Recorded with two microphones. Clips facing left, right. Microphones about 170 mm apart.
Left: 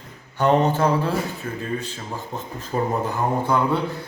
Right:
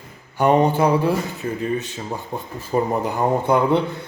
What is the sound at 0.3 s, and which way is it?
Speech, 10° right (ahead or behind).